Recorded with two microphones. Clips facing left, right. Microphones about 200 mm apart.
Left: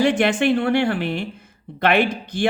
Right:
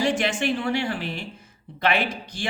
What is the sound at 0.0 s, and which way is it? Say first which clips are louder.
A man's voice: left 6 dB; 60° left (ahead or behind).